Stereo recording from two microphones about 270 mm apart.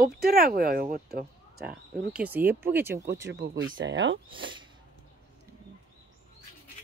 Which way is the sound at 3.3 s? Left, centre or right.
Right.